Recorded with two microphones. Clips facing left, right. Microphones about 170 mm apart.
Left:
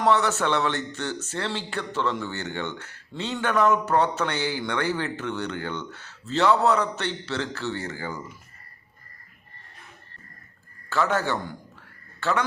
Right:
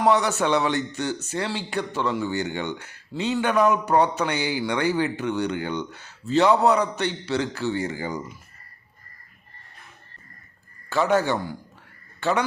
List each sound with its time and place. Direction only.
0.0 s speech: 15° right (ahead or behind)
10.8 s speech: 15° right (ahead or behind)